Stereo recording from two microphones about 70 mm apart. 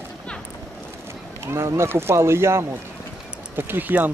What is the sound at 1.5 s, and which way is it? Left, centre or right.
Speech, right.